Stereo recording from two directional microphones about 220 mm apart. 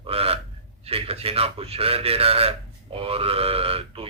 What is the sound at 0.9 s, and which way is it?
A man's voice, 25° right (ahead or behind).